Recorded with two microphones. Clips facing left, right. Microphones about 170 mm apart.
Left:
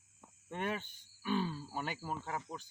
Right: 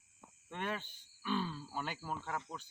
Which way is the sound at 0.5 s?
15° left (ahead or behind).